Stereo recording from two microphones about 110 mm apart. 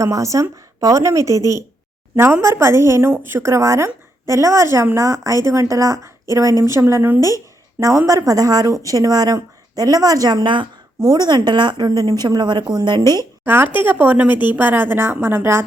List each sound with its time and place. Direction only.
0.0 s a woman's voice: 30° right (ahead or behind)
13.4 s a woman's voice: 20° right (ahead or behind)